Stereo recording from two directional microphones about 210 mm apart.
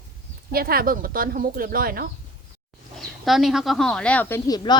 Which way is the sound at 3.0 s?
Centre (ahead or behind).